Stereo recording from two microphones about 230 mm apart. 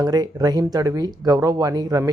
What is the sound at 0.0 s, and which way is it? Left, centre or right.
Speech, centre.